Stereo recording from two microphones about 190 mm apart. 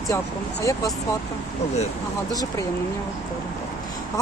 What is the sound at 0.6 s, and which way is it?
Speech, 15° left (ahead or behind).